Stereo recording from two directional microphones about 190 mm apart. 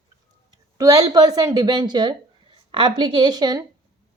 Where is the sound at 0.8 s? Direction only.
20° right (ahead or behind).